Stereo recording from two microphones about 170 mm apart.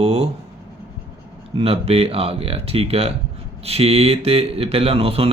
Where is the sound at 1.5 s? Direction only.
35° right (ahead or behind).